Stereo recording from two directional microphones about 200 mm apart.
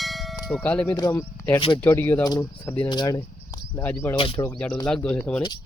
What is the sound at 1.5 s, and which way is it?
Speech, 25° left (ahead or behind).